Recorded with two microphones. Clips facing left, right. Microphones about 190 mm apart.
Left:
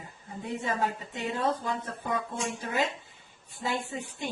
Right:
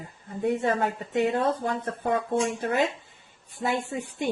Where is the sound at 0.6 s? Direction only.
60° right (ahead or behind).